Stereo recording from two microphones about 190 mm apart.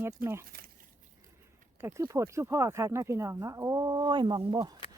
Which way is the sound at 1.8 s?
15° right (ahead or behind).